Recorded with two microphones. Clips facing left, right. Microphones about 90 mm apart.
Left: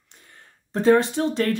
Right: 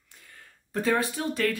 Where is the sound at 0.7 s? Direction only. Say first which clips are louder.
Left 8 dB; 25° left (ahead or behind).